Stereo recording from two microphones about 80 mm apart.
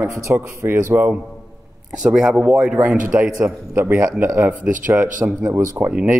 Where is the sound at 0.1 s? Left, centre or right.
Right.